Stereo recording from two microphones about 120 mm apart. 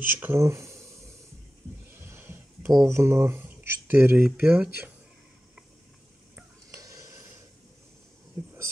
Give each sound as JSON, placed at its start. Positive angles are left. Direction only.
{"t": 0.2, "sound": "speech", "side_deg": -20}
{"t": 2.0, "sound": "a sound", "side_deg": -20}
{"t": 2.7, "sound": "speech", "side_deg": -25}
{"t": 6.7, "sound": "stir", "side_deg": -30}